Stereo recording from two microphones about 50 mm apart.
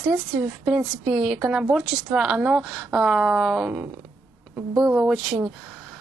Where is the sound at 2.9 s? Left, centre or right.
Centre.